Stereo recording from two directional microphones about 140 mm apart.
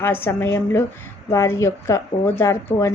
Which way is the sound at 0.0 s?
15° left (ahead or behind).